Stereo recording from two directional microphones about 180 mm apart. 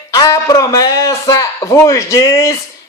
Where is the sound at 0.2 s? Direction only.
20° left (ahead or behind).